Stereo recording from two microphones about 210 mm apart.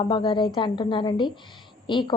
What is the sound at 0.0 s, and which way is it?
A woman's voice, 25° left (ahead or behind).